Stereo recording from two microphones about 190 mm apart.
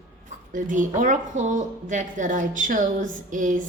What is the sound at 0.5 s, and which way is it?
A woman's voice, 45° right (ahead or behind).